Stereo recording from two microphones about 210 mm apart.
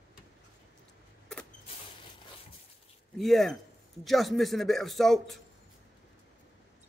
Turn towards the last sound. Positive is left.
turn(degrees=0)  # may be behind; listen again after turning